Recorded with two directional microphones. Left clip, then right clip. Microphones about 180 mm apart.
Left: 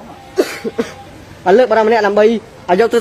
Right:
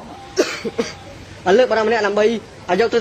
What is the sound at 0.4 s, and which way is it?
Cough, 25° left (ahead or behind).